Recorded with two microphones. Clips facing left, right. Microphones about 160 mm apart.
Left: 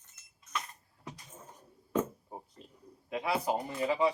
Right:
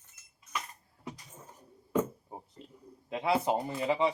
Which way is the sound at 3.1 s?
25° right (ahead or behind).